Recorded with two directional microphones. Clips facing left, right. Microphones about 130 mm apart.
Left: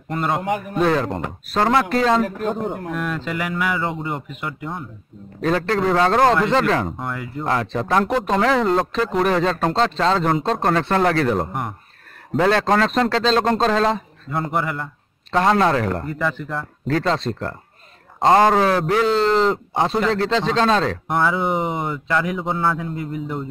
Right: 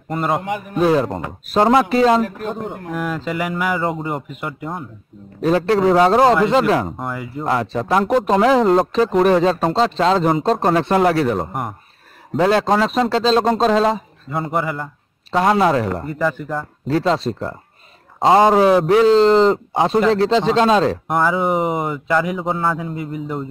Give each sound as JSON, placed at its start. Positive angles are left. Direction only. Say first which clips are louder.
{"t": 0.1, "sound": "speech", "louder": "right 1 dB", "side_deg": -5}
{"t": 1.5, "sound": "speech", "louder": "right 4 dB", "side_deg": -20}
{"t": 1.9, "sound": "speech", "louder": "right 3 dB", "side_deg": -5}
{"t": 2.2, "sound": "a man's voice", "louder": "left 2 dB", "side_deg": 40}
{"t": 2.9, "sound": "speech", "louder": "right 2 dB", "side_deg": 0}
{"t": 3.4, "sound": "speech", "louder": "right 1 dB", "side_deg": -35}
{"t": 5.4, "sound": "speech", "louder": "right 4 dB", "side_deg": -10}
{"t": 8.4, "sound": "a man's voice", "louder": "right 4 dB", "side_deg": -15}
{"t": 8.9, "sound": "a man's voice", "louder": "right 5 dB", "side_deg": 0}
{"t": 19.0, "sound": "speech", "louder": "right 5 dB", "side_deg": -30}
{"t": 19.5, "sound": "speech", "louder": "right 4 dB", "side_deg": 0}